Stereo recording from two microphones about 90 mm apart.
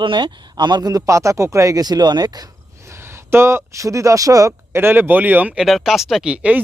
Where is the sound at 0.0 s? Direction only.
70° right (ahead or behind).